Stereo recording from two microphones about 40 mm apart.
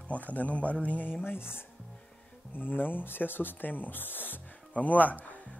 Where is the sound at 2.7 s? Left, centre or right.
Left.